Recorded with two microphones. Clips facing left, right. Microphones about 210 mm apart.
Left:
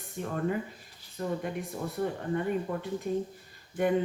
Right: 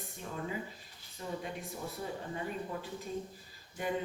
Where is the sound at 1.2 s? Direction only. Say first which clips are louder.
Left 7 dB; 55° left (ahead or behind).